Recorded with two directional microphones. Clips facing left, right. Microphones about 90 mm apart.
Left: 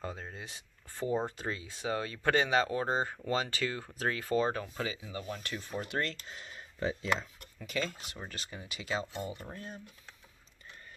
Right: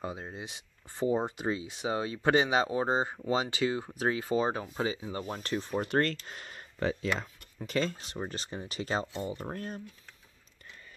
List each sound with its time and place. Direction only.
0.0 s speech: 15° right (ahead or behind)
4.8 s speech: 30° right (ahead or behind); by 7.2 s 70° right (ahead or behind)
7.5 s speech: 40° right (ahead or behind)
9.4 s speech: 55° right (ahead or behind)